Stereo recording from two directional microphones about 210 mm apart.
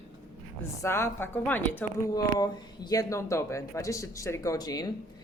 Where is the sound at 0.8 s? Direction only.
10° left (ahead or behind).